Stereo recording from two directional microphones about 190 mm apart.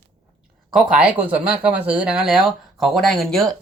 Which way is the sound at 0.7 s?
5° right (ahead or behind).